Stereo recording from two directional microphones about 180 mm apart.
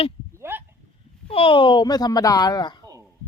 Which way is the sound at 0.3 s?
10° right (ahead or behind).